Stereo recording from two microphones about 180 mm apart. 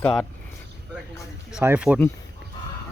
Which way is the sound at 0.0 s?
5° left (ahead or behind).